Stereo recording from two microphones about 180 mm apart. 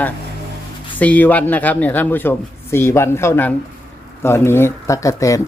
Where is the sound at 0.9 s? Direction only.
10° left (ahead or behind).